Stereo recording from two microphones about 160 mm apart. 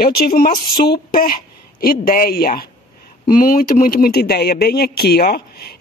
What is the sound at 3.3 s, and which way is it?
Speech, 60° left (ahead or behind).